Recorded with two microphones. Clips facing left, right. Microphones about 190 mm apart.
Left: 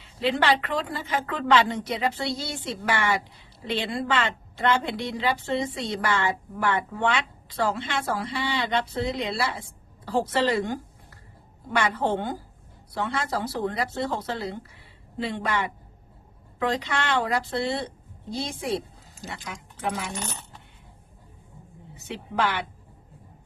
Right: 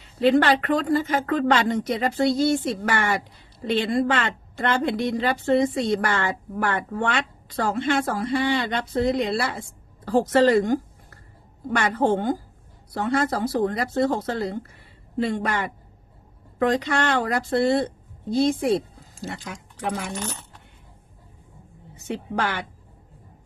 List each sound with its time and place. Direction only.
0.0 s a woman's voice: 45° right (ahead or behind)
21.9 s a woman's voice: 45° right (ahead or behind)